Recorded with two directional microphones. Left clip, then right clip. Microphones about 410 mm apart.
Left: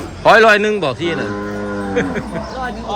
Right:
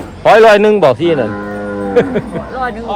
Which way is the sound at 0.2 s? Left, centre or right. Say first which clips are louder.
Right 3 dB; centre.